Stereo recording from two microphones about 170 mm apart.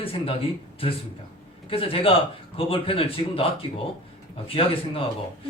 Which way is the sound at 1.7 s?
35° left (ahead or behind).